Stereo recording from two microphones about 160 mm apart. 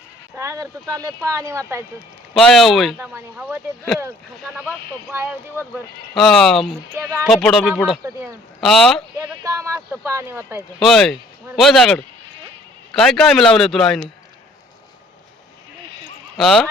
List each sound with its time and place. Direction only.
0.3 s speech: 20° right (ahead or behind)
2.3 s speech: centre (ahead or behind)
3.0 s speech: 15° right (ahead or behind)
6.1 s speech: centre (ahead or behind)
6.9 s speech: 15° right (ahead or behind)
7.3 s speech: 5° left (ahead or behind)
9.1 s a sound: 10° right (ahead or behind)
9.4 s speech: 15° right (ahead or behind)
10.8 s speech: centre (ahead or behind)
16.4 s speech: centre (ahead or behind)